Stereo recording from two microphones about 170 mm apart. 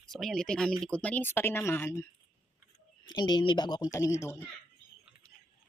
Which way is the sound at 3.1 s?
25° left (ahead or behind).